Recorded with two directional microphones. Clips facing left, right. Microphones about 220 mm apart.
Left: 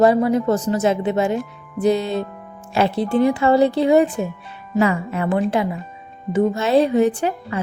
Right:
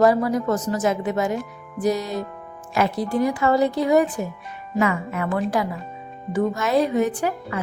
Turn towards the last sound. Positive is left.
turn(degrees=25)  # may be behind; listen again after turning